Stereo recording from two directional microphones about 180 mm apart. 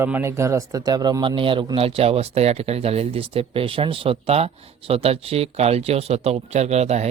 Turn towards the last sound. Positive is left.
turn(degrees=-35)  # may be behind; listen again after turning